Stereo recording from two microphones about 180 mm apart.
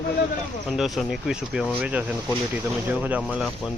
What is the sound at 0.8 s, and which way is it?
Speech, centre (ahead or behind).